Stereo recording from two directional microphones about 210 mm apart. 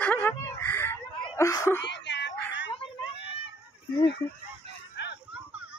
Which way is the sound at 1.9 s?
60° left (ahead or behind).